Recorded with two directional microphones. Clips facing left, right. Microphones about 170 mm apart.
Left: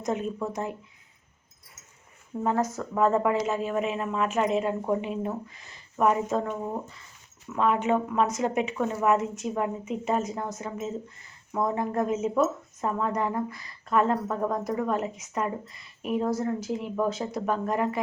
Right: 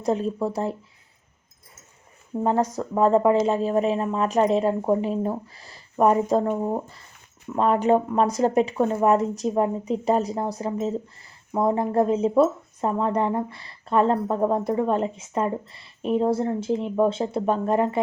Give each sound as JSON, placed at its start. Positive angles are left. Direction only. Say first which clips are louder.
{"t": 0.0, "sound": "speech", "louder": "right 5 dB", "side_deg": -30}
{"t": 2.4, "sound": "speech", "louder": "right 4 dB", "side_deg": -30}
{"t": 2.6, "sound": "speech", "louder": "right 5 dB", "side_deg": -15}
{"t": 3.0, "sound": "speech", "louder": "right 5 dB", "side_deg": -30}